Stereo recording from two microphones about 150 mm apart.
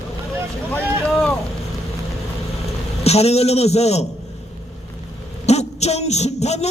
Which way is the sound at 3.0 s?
45° left (ahead or behind).